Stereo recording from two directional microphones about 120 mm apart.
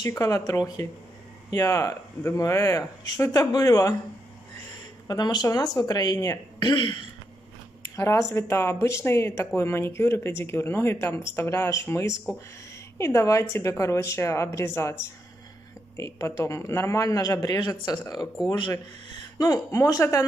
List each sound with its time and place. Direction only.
0.1 s speech: 25° left (ahead or behind)
5.0 s speech: 35° left (ahead or behind)
6.7 s speech: 40° left (ahead or behind)
7.8 s speech: 25° left (ahead or behind)